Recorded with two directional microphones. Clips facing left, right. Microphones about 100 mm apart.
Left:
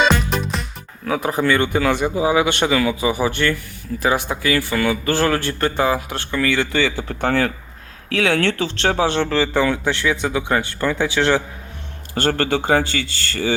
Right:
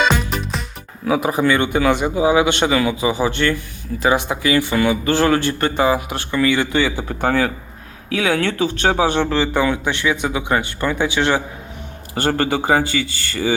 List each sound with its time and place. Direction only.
1.0 s speech: 10° right (ahead or behind)